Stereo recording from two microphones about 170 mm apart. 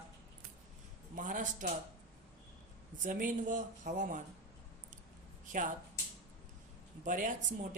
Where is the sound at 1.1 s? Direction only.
50° right (ahead or behind).